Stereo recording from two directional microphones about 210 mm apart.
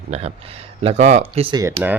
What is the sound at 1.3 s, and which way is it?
Speech, 20° right (ahead or behind).